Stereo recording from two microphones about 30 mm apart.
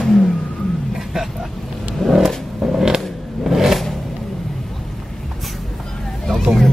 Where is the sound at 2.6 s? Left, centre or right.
Centre.